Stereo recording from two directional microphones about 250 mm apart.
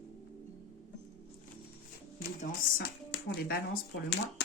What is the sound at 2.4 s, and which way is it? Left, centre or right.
Speech, left.